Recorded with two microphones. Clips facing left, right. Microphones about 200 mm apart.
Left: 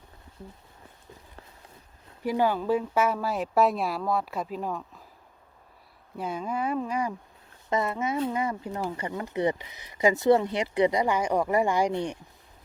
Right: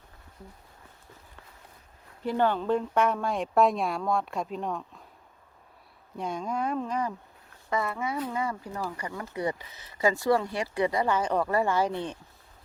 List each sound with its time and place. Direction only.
2.2 s speech: 10° left (ahead or behind)
6.1 s speech: 5° left (ahead or behind)
7.7 s speech: 20° left (ahead or behind)